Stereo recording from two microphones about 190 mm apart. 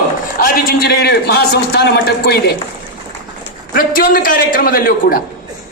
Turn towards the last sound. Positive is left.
turn(degrees=50)  # may be behind; listen again after turning